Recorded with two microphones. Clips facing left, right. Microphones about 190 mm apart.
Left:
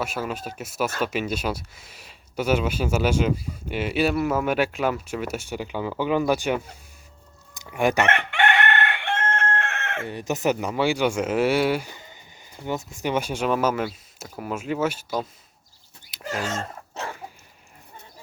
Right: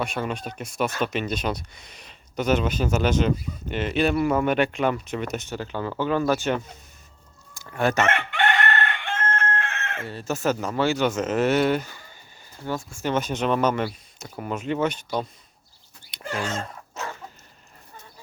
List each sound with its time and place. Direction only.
0.0 s speech: 5° left (ahead or behind)
7.5 s a sound: 15° left (ahead or behind)
8.0 s chicken: 60° left (ahead or behind)
10.1 s speech: 15° left (ahead or behind)
16.2 s dog: 40° left (ahead or behind)